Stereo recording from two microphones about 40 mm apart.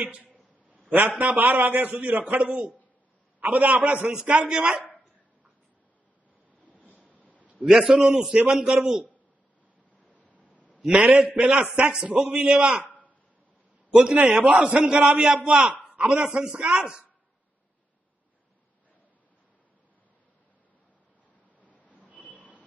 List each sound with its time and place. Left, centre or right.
0.0 s a sound: right
1.0 s a man's voice: right
4.1 s a man's voice: right
7.0 s a sound: left
7.6 s a man's voice: centre
10.9 s a man's voice: right
12.4 s a man's voice: right
13.9 s a man's voice: right
14.3 s a man's voice: right
15.0 s a man's voice: right
21.5 s a sound: left